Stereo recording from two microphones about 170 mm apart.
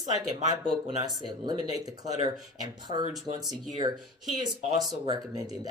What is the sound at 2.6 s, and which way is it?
Speech, 25° right (ahead or behind).